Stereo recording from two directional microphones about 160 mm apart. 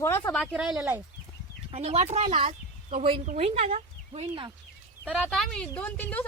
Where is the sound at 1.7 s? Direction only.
40° right (ahead or behind).